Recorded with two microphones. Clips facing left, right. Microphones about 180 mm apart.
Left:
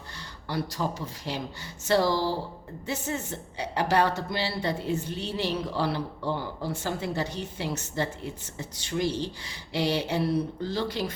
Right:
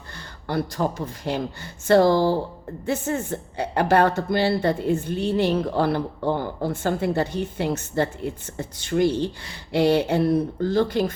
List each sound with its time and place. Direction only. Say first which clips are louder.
0.4 s a woman's voice: right 6 dB; 55° right (ahead or behind)